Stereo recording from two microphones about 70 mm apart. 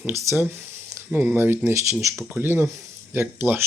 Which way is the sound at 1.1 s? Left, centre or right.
Right.